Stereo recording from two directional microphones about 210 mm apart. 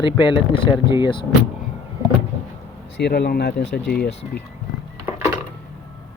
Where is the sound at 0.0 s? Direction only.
20° left (ahead or behind).